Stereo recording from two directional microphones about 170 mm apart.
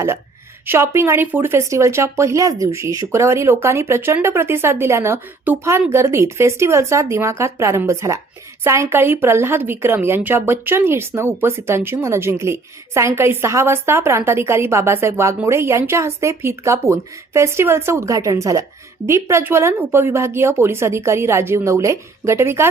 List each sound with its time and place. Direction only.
0.7 s a woman's voice: 15° right (ahead or behind)